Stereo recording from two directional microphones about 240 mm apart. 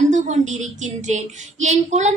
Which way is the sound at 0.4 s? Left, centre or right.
Right.